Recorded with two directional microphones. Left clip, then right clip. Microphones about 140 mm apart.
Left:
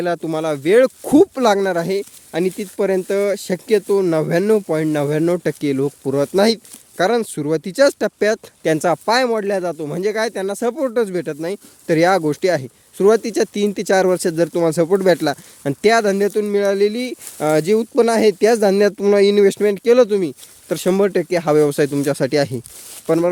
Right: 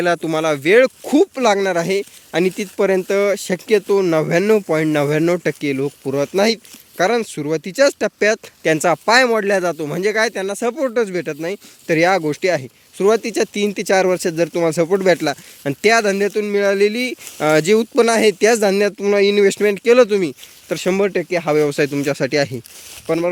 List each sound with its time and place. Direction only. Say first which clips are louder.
0.0 s speech: right 3 dB; 15° left (ahead or behind)
1.0 s speech: left 2 dB; 50° left (ahead or behind)
1.5 s speech: even; 40° left (ahead or behind)
1.7 s speech: right 1 dB; 20° left (ahead or behind)
10.4 s speech: even; 30° left (ahead or behind); by 18.0 s 15° left (ahead or behind)
18.0 s speech: left 1 dB; 25° left (ahead or behind)
20.7 s speech: left 1 dB; 35° left (ahead or behind)
23.0 s speech: left 2 dB; 40° left (ahead or behind)